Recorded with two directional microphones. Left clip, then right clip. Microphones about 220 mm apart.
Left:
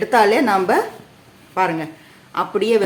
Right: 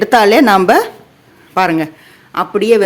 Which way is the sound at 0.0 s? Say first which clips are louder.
Right 6 dB; 45° right (ahead or behind).